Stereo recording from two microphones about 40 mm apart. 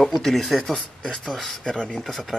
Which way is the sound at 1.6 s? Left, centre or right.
Centre.